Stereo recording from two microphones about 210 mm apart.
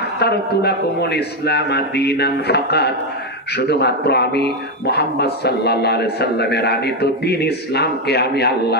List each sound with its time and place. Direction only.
0.2 s speech: 50° left (ahead or behind)